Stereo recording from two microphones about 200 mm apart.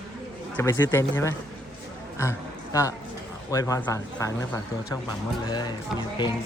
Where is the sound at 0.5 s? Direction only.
10° left (ahead or behind).